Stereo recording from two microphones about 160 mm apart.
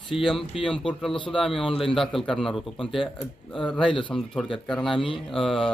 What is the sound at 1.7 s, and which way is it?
Speech, 35° left (ahead or behind).